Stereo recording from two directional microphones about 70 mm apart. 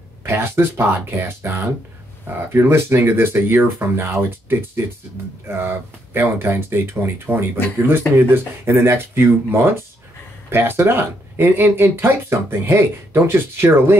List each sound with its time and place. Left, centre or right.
0.2 s speech: right